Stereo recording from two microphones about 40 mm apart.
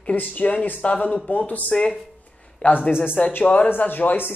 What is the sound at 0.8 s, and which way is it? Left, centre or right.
Speech, left.